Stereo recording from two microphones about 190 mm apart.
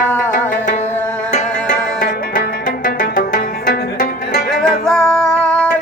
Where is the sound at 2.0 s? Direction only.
50° left (ahead or behind).